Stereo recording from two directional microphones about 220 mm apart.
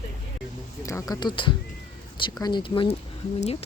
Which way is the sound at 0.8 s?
15° left (ahead or behind).